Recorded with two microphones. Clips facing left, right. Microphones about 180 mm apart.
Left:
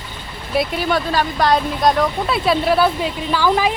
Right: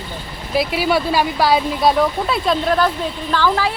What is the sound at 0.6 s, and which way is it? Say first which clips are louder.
Speech: right 1 dB; 5° right (ahead or behind).